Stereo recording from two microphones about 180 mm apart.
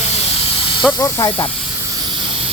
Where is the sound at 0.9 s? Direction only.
20° left (ahead or behind).